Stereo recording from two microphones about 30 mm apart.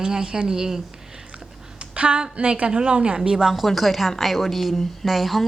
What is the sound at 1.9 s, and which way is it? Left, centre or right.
A woman's voice, right.